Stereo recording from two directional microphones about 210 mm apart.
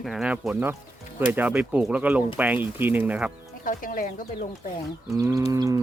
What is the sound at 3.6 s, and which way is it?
Speech, 40° left (ahead or behind).